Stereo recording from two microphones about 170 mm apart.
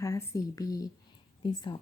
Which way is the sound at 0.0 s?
20° left (ahead or behind).